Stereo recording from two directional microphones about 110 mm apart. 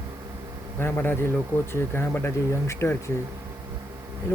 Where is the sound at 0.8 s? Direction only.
20° left (ahead or behind).